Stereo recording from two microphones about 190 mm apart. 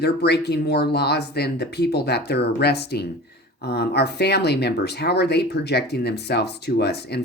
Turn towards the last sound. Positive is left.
turn(degrees=60)  # may be behind; listen again after turning